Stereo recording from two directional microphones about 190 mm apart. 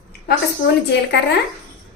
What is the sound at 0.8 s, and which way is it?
Speech, 60° left (ahead or behind).